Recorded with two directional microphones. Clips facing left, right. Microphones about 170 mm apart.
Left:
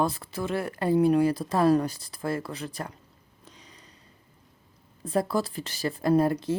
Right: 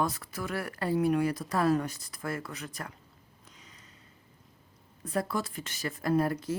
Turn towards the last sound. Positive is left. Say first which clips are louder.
# left 5 dB
turn(degrees=25)  # may be behind; listen again after turning